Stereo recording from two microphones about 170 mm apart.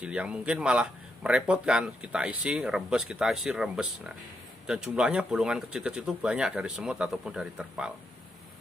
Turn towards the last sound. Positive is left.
turn(degrees=-5)  # may be behind; listen again after turning